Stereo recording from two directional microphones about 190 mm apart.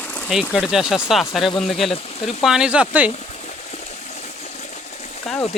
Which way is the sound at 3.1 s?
35° left (ahead or behind).